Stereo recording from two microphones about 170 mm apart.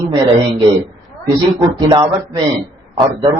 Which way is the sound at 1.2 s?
30° right (ahead or behind).